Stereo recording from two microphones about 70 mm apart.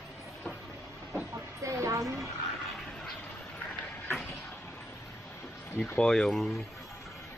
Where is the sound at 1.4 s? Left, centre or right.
Right.